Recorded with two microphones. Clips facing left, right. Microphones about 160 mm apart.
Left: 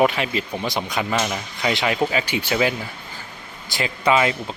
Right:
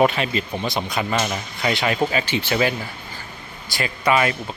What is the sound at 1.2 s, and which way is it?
Speech, 5° right (ahead or behind).